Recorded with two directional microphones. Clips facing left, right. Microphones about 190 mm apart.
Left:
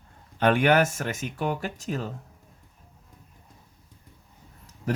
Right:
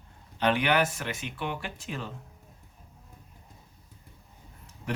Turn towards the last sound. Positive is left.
turn(degrees=40)  # may be behind; listen again after turning